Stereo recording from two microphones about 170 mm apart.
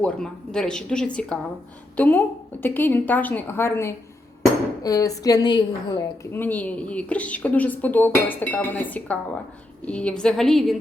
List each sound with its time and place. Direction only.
0.0 s a woman's voice: 5° left (ahead or behind); by 6.1 s 25° left (ahead or behind)
6.3 s speech: 10° left (ahead or behind)